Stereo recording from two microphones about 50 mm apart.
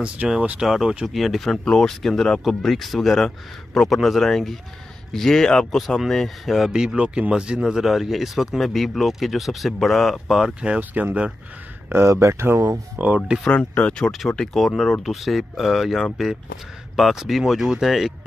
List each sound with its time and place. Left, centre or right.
0.2 s speech: right
0.6 s speech: centre
6.7 s speech: centre
7.0 s speech: right; by 10.2 s centre
10.2 s speech: centre
10.8 s speech: right
12.1 s speech: right
12.6 s speech: right
13.5 s speech: left
14.3 s speech: centre